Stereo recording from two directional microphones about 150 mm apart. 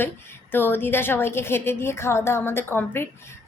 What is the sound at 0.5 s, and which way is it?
A woman's voice, 15° left (ahead or behind).